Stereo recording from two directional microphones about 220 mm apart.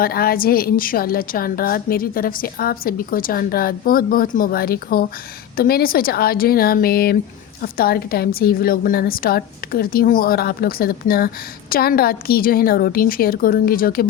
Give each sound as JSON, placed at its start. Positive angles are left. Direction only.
{"t": 0.0, "sound": "a woman's voice", "side_deg": 45}